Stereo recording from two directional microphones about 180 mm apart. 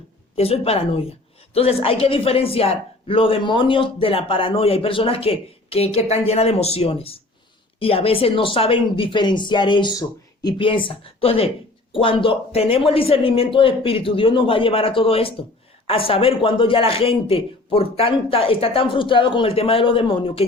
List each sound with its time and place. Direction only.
0.3 s a woman's voice: 35° left (ahead or behind)